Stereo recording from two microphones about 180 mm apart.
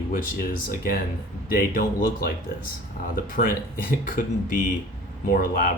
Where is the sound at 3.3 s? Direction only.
50° left (ahead or behind).